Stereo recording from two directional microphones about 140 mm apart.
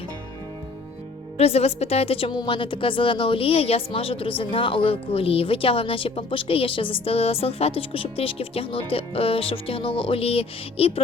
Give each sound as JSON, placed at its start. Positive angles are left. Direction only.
{"t": 1.4, "sound": "a woman's voice", "side_deg": 45}